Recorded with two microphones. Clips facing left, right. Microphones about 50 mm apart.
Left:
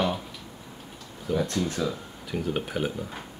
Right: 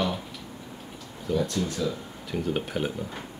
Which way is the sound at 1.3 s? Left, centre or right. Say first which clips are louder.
Even; left.